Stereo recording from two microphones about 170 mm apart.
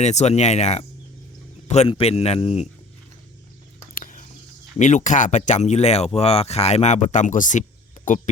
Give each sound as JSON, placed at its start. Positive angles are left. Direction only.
{"t": 0.0, "sound": "speech", "side_deg": 40}
{"t": 3.9, "sound": "a sound", "side_deg": 50}
{"t": 4.8, "sound": "speech", "side_deg": 45}